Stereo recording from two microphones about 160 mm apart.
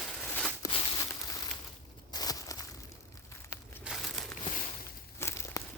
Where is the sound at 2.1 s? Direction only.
25° left (ahead or behind).